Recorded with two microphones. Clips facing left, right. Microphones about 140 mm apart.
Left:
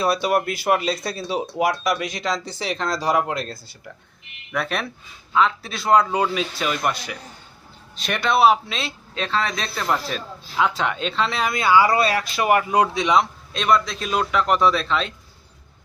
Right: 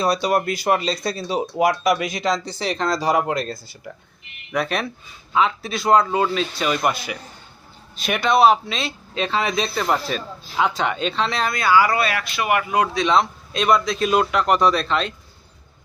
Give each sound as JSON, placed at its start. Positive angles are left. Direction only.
{"t": 0.0, "sound": "speech", "side_deg": 5}
{"t": 6.1, "sound": "speech", "side_deg": 10}
{"t": 11.5, "sound": "speech", "side_deg": 20}
{"t": 11.9, "sound": "speech", "side_deg": 35}
{"t": 13.1, "sound": "speech", "side_deg": 0}